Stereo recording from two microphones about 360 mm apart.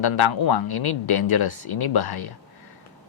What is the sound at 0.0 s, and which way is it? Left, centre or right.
Speech, left.